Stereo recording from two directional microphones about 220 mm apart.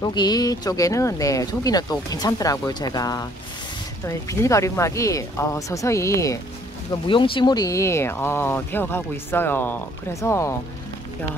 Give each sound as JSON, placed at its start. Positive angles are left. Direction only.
{"t": 0.0, "sound": "speech", "side_deg": 20}